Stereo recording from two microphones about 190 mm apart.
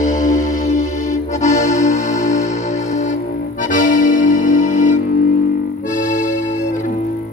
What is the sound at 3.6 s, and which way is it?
Accordion, 45° left (ahead or behind).